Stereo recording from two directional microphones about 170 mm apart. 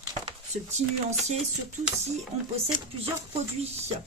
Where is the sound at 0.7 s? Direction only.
40° right (ahead or behind).